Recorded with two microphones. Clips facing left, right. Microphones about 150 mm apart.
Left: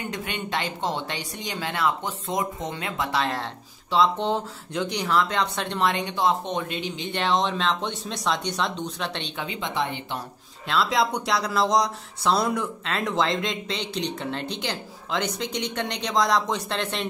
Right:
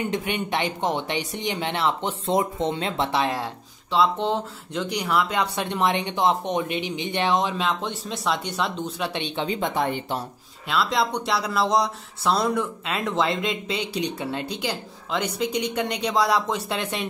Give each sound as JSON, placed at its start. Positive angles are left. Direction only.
{"t": 0.1, "sound": "speech", "side_deg": -20}
{"t": 3.9, "sound": "speech", "side_deg": 0}
{"t": 9.5, "sound": "speech", "side_deg": -50}
{"t": 10.7, "sound": "speech", "side_deg": 0}